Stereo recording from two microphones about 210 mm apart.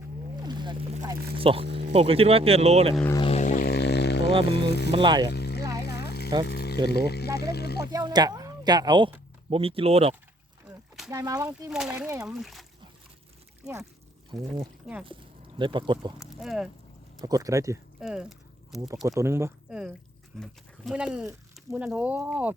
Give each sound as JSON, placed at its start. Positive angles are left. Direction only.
{"t": 0.4, "sound": "boat", "side_deg": -20}
{"t": 1.0, "sound": "speech", "side_deg": -25}
{"t": 3.1, "sound": "didgeridoo", "side_deg": 25}
{"t": 4.9, "sound": "speech", "side_deg": -25}
{"t": 5.3, "sound": "a sound", "side_deg": 50}
{"t": 6.8, "sound": "speech", "side_deg": 50}
{"t": 7.9, "sound": "speech", "side_deg": -20}
{"t": 11.1, "sound": "speech", "side_deg": -15}
{"t": 11.4, "sound": "speech", "side_deg": -5}
{"t": 15.0, "sound": "speech", "side_deg": -25}
{"t": 16.2, "sound": "speech", "side_deg": 0}
{"t": 17.2, "sound": "speech", "side_deg": -15}
{"t": 18.0, "sound": "a sound", "side_deg": -5}
{"t": 19.0, "sound": "speech", "side_deg": -15}